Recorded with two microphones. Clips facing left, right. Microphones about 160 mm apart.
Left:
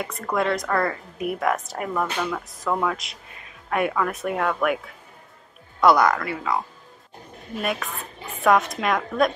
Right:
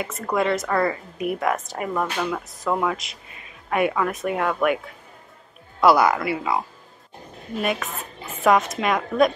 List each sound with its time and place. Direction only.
0.0 s a woman's voice: centre (ahead or behind)
5.8 s speech: 5° right (ahead or behind)
8.4 s a woman's voice: centre (ahead or behind)